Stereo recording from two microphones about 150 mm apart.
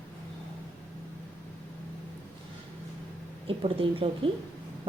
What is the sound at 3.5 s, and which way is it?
Speech, 35° right (ahead or behind).